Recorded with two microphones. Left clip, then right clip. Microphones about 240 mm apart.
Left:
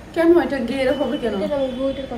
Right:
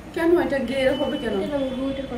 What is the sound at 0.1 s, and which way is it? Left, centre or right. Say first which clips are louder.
Speech: left 4 dB; centre.